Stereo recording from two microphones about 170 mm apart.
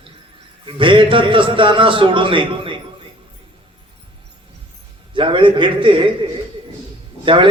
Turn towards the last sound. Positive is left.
turn(degrees=-30)  # may be behind; listen again after turning